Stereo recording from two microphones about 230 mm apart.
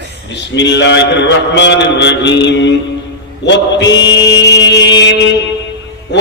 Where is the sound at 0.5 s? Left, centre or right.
Left.